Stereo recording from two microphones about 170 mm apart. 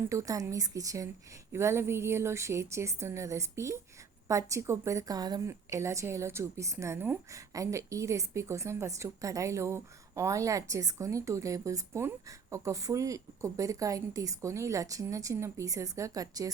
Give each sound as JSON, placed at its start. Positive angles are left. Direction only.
{"t": 0.1, "sound": "a woman's voice", "side_deg": -20}